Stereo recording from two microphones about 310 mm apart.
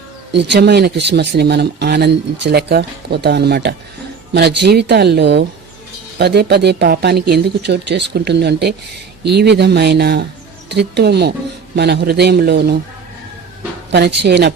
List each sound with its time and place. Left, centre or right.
0.3 s speech: right
13.9 s speech: right